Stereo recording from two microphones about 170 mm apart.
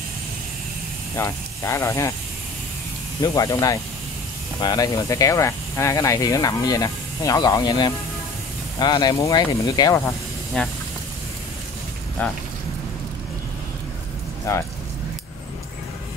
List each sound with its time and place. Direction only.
1.1 s speech: 15° left (ahead or behind)
3.2 s speech: 20° left (ahead or behind)
10.0 s hiss: 5° left (ahead or behind)
12.2 s speech: 10° left (ahead or behind)